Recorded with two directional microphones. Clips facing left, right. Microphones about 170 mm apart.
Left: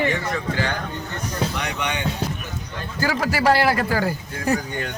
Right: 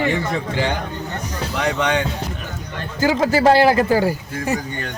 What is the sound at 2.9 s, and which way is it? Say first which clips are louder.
A man's voice: right 6 dB; 20° right (ahead or behind).